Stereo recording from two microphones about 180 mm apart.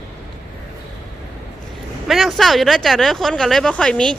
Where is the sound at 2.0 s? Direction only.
Centre (ahead or behind).